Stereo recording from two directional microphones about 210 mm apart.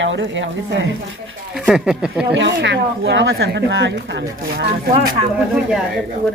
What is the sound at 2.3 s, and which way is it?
Speech, 60° right (ahead or behind).